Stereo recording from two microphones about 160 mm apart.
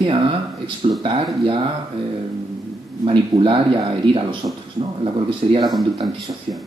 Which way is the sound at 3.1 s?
30° right (ahead or behind).